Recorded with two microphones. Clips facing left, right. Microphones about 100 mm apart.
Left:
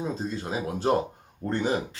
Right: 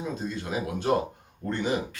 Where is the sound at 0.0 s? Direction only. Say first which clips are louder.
Left 2 dB; 30° left (ahead or behind).